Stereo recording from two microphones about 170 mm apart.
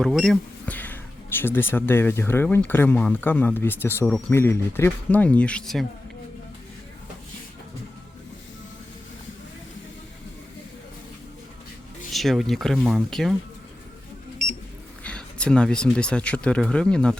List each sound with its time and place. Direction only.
0.0 s speech: centre (ahead or behind)
12.1 s speech: centre (ahead or behind)
15.0 s speech: 5° left (ahead or behind)